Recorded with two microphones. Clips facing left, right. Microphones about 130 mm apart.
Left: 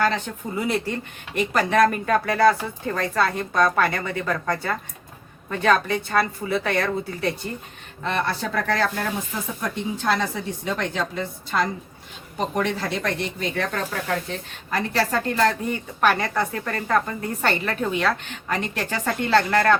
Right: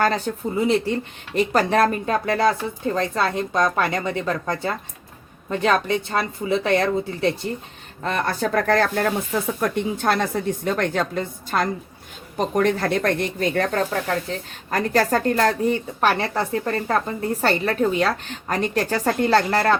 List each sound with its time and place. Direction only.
0.0 s a woman's voice: 40° right (ahead or behind)
0.6 s speech: 25° right (ahead or behind)
8.0 s a woman's voice: 45° right (ahead or behind)
14.7 s a woman's voice: 45° right (ahead or behind)